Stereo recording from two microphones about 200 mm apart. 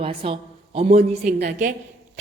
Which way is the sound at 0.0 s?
30° right (ahead or behind).